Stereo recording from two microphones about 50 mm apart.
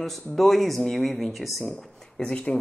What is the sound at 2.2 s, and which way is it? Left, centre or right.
Speech, left.